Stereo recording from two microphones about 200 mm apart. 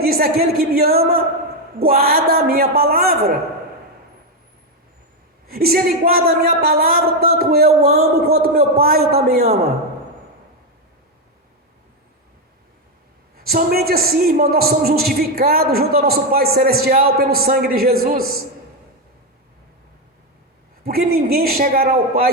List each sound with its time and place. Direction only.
0.0 s a man's voice: 50° right (ahead or behind)
5.5 s a man's voice: 50° right (ahead or behind)
13.3 s a man's voice: 50° right (ahead or behind)
20.8 s a man's voice: 50° right (ahead or behind)